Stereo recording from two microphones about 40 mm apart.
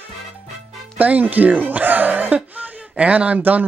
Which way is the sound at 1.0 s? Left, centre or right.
Right.